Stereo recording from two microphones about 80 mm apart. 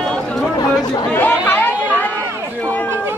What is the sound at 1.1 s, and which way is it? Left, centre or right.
Chatter, left.